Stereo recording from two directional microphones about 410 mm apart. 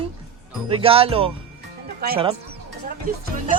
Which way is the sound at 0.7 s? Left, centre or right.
Centre.